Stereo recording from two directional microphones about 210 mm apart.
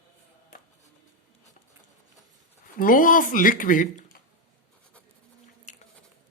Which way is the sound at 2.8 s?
40° left (ahead or behind).